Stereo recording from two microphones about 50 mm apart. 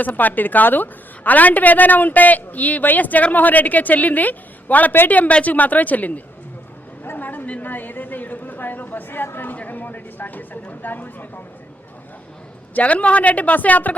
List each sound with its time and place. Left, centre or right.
0.0 s a woman's voice: left
7.0 s a sound: left
12.7 s speech: left